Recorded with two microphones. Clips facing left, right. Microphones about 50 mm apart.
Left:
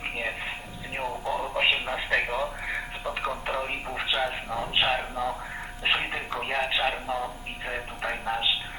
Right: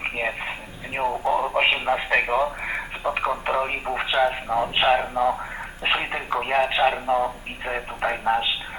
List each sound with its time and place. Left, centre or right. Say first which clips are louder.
0.0 s a sound: right 5 dB; right
0.9 s radio: right 7 dB; right
3.0 s speech: right 10 dB; right